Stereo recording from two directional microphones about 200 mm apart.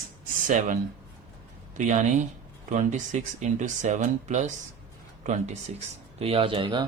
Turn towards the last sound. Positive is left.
turn(degrees=-25)  # may be behind; listen again after turning